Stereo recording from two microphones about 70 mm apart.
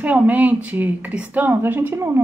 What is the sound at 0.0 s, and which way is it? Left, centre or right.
A woman's voice, right.